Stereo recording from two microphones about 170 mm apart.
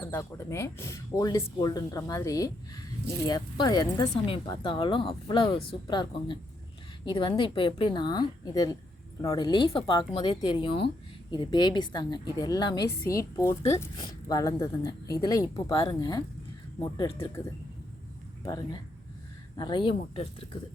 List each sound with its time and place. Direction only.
0.1 s speech: 15° left (ahead or behind)
10.7 s speech: 80° left
11.5 s speech: 25° left (ahead or behind)
19.5 s speech: 25° left (ahead or behind)